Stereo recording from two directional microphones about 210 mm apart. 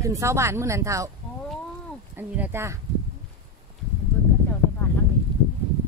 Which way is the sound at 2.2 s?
10° right (ahead or behind).